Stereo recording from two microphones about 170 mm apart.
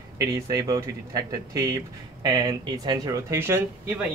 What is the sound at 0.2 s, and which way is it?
Speech, 20° right (ahead or behind).